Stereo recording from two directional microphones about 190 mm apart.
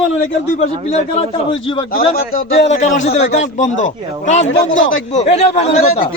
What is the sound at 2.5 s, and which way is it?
A man's voice, 35° left (ahead or behind).